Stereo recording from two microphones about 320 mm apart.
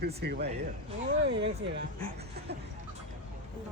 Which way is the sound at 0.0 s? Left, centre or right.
Right.